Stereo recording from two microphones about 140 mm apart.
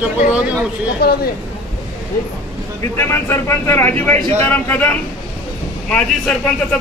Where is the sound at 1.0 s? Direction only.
90° left.